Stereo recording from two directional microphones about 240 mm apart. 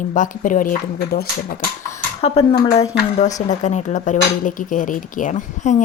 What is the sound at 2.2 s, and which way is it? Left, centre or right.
Speech, left.